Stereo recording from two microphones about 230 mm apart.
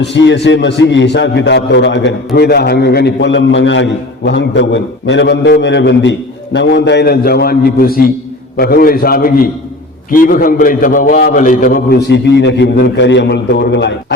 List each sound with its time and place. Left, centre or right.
0.0 s a man's voice: left